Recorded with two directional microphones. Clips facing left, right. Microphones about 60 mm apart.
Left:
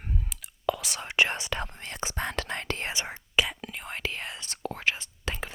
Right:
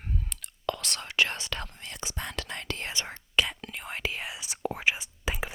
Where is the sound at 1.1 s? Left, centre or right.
Left.